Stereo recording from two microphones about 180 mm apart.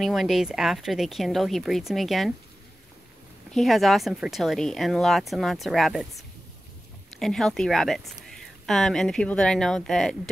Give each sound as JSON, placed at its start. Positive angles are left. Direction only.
{"t": 0.0, "sound": "speech", "side_deg": 0}
{"t": 3.5, "sound": "speech", "side_deg": 0}